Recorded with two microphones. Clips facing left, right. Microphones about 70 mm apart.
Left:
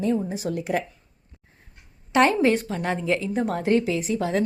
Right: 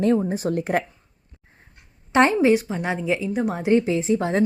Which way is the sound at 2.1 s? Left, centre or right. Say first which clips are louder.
Right 2 dB; right.